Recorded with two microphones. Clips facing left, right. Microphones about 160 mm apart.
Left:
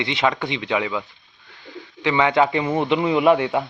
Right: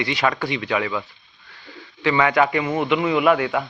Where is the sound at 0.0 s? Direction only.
20° left (ahead or behind).